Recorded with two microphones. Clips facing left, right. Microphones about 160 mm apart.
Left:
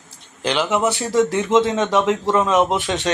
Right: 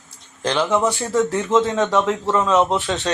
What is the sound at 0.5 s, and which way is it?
Speech, 5° left (ahead or behind).